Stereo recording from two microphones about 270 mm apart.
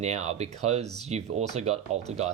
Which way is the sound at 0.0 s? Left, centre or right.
Right.